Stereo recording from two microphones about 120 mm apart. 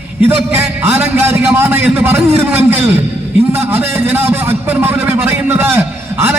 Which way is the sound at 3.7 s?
15° right (ahead or behind).